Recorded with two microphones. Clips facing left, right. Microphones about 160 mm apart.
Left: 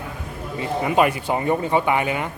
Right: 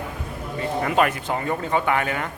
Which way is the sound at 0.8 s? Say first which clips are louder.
Left 3 dB; 10° left (ahead or behind).